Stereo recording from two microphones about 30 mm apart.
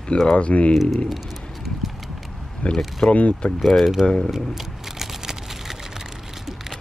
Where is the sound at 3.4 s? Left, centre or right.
Left.